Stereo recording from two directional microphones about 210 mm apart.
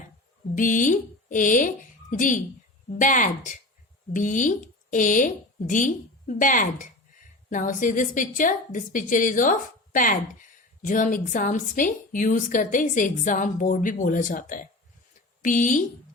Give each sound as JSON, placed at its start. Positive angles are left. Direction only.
{"t": 0.5, "sound": "a woman's voice", "side_deg": 40}